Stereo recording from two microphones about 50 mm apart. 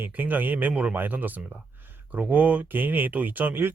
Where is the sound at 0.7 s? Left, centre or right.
Right.